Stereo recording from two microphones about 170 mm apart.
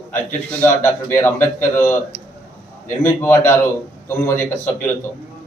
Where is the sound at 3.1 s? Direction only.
15° left (ahead or behind).